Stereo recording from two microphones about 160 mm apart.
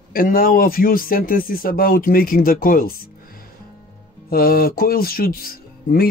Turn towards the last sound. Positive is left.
turn(degrees=70)  # may be behind; listen again after turning